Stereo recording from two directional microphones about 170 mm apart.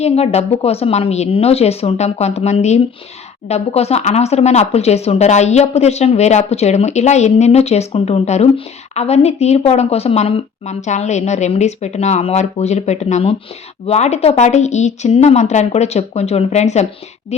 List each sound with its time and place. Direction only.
0.0 s speech: 40° left (ahead or behind)